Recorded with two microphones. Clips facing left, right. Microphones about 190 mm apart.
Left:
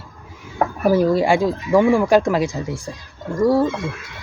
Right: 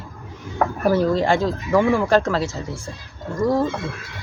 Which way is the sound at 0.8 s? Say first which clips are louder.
Left 3 dB; 10° left (ahead or behind).